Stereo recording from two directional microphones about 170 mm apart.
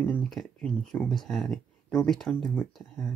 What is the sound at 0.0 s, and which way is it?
Speech, 5° left (ahead or behind).